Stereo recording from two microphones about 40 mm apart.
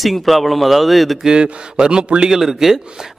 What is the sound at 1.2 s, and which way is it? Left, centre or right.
A man's voice, right.